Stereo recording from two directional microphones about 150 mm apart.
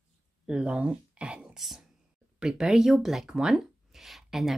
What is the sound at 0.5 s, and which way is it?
Speech, 5° right (ahead or behind).